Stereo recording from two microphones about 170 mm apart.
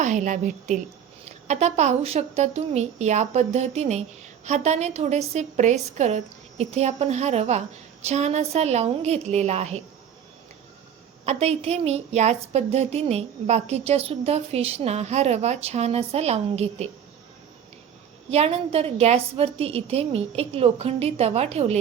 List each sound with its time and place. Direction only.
0.0 s a woman's voice: 45° right (ahead or behind)
11.3 s a woman's voice: 40° right (ahead or behind)
18.3 s a woman's voice: 35° right (ahead or behind)